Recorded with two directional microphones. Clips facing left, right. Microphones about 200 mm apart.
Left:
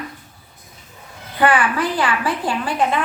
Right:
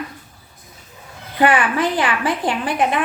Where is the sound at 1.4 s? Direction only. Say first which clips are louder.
Right 1 dB; 20° right (ahead or behind).